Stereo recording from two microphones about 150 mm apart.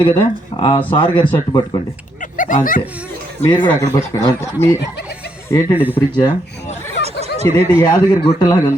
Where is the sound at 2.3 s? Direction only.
65° left (ahead or behind).